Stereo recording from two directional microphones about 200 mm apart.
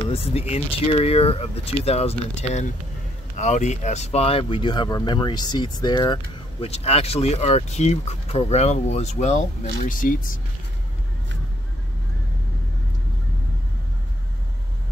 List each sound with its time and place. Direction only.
0.1 s speech: 30° left (ahead or behind)